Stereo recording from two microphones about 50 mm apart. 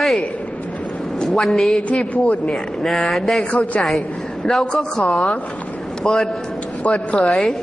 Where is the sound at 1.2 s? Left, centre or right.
Centre.